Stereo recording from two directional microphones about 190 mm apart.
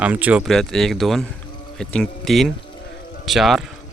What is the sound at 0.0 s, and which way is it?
Speech, 10° right (ahead or behind).